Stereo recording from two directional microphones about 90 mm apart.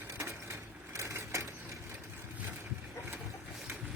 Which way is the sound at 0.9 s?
35° right (ahead or behind).